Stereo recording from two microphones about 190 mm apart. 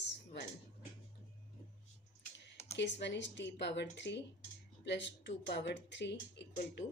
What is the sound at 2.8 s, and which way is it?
Speech, 65° left (ahead or behind).